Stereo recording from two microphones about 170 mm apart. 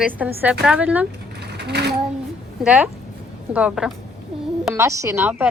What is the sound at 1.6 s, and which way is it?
Speech, 80° right.